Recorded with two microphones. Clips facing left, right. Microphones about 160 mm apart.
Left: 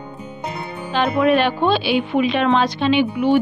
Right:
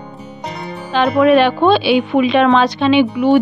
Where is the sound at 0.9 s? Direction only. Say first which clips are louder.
Right 5 dB; 85° right.